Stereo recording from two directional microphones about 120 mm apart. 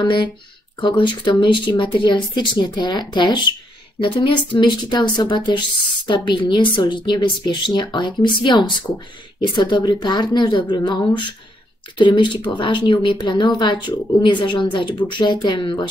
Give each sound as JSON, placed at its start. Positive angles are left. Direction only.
{"t": 0.0, "sound": "speech", "side_deg": 40}